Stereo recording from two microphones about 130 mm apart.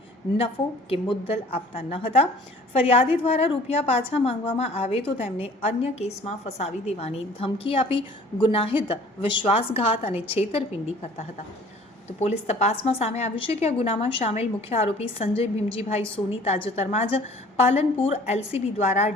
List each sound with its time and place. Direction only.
0.3 s a woman's voice: 45° left (ahead or behind)
12.2 s a woman's voice: 55° left (ahead or behind)